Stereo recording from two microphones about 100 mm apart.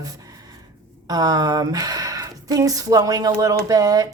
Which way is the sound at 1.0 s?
40° right (ahead or behind).